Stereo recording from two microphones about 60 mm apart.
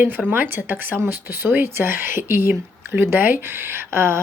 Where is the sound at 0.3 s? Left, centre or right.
Right.